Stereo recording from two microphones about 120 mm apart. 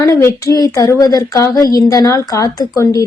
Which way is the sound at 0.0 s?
25° left (ahead or behind).